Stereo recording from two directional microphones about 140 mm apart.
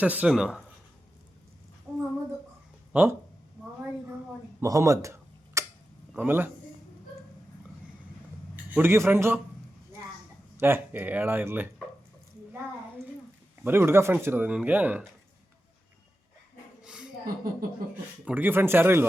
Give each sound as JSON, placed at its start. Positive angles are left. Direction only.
{"t": 0.0, "sound": "speech", "side_deg": -10}
{"t": 2.9, "sound": "speech", "side_deg": -15}
{"t": 4.6, "sound": "a sound", "side_deg": -20}
{"t": 6.1, "sound": "speech", "side_deg": -15}
{"t": 8.7, "sound": "speech", "side_deg": -15}
{"t": 10.6, "sound": "speech", "side_deg": -15}
{"t": 13.7, "sound": "speech", "side_deg": -15}
{"t": 16.8, "sound": "a sound", "side_deg": -5}
{"t": 17.2, "sound": "speech", "side_deg": -90}
{"t": 18.3, "sound": "speech", "side_deg": -15}